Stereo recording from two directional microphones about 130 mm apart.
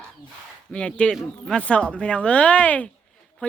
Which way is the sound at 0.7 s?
5° left (ahead or behind).